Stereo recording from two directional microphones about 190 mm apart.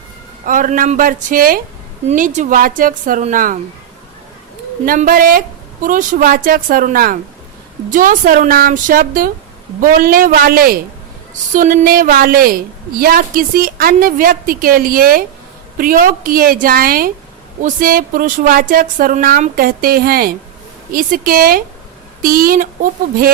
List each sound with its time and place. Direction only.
0.4 s a woman's voice: 45° right (ahead or behind)
4.9 s a woman's voice: 50° right (ahead or behind)